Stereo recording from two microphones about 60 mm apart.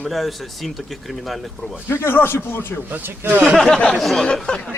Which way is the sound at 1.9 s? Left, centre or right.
Left.